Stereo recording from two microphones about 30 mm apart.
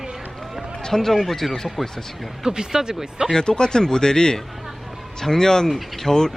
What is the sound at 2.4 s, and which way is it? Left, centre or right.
Speech, right.